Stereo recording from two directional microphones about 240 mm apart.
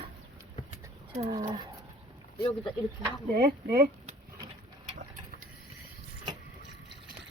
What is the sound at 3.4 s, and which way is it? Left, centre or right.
Speech, right.